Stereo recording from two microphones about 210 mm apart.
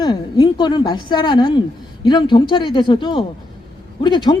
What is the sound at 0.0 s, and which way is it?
Speech, 20° left (ahead or behind).